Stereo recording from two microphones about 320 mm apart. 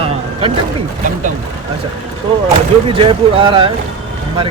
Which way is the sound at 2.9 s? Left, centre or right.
Centre.